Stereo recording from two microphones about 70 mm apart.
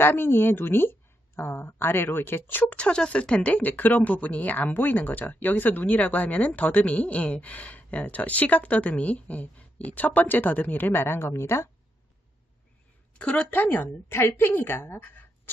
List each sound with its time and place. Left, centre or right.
0.0 s speech: left
2.7 s speech: centre; by 11.7 s left
13.2 s speech: centre